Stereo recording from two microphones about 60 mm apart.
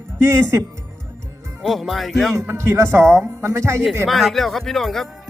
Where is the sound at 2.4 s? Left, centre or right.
Right.